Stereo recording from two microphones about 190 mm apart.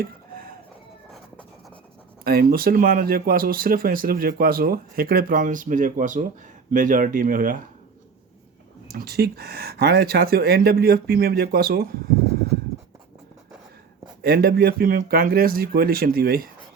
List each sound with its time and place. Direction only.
0.0 s a sound: 50° right (ahead or behind)
2.2 s speech: 50° right (ahead or behind)
8.9 s speech: 55° right (ahead or behind)
14.2 s speech: 55° right (ahead or behind)